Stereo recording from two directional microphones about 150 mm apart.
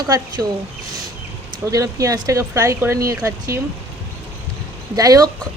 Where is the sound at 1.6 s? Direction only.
20° right (ahead or behind).